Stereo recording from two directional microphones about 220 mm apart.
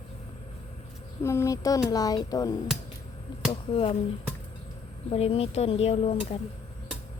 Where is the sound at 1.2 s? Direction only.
10° left (ahead or behind).